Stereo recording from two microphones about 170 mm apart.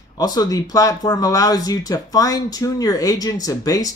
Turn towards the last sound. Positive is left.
turn(degrees=20)  # may be behind; listen again after turning